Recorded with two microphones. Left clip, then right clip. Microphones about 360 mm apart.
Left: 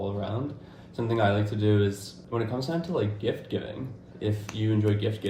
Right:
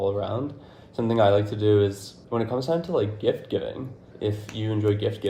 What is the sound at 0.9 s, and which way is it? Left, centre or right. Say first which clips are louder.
Speech: right 6 dB; centre.